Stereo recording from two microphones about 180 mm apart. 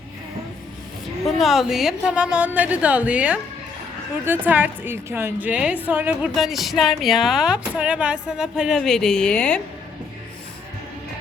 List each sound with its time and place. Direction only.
1.2 s a woman's voice: centre (ahead or behind)